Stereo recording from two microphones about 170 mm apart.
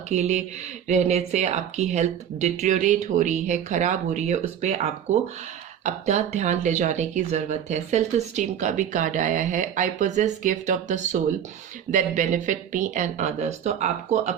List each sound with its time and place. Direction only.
0.1 s speech: 40° right (ahead or behind)